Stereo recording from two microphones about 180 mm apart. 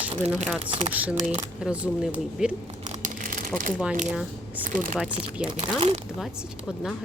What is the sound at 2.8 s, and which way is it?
Crumpling, 45° right (ahead or behind).